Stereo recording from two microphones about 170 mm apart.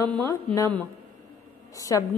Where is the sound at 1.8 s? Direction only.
20° left (ahead or behind).